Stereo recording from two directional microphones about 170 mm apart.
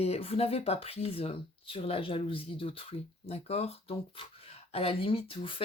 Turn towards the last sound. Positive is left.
turn(degrees=30)  # may be behind; listen again after turning